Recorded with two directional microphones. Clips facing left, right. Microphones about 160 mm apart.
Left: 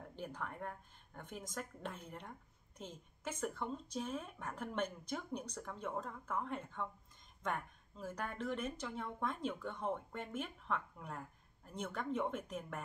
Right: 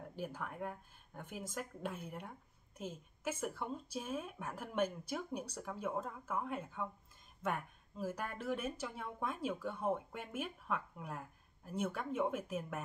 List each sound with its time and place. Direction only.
0.1 s speech: 5° right (ahead or behind)